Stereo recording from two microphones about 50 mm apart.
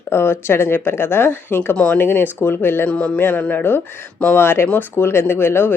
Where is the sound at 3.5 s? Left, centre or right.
Left.